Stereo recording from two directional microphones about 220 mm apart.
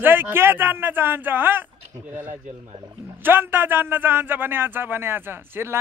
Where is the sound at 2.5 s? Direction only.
30° right (ahead or behind).